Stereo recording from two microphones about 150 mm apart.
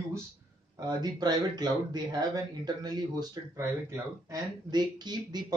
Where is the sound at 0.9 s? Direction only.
30° right (ahead or behind).